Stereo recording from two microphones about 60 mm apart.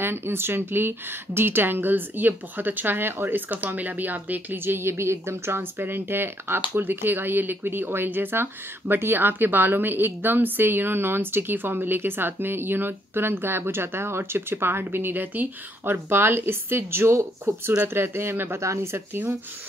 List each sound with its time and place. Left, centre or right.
0.0 s speech: right
17.8 s speech: right
18.6 s speech: right
18.9 s speech: right